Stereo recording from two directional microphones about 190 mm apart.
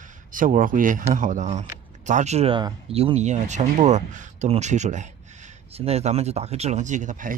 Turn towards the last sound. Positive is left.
turn(degrees=-40)  # may be behind; listen again after turning